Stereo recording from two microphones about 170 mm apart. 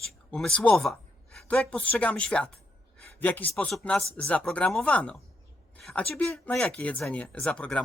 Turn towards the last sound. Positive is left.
turn(degrees=5)  # may be behind; listen again after turning